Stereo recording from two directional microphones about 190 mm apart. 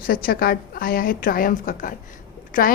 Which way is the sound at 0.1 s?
50° left (ahead or behind).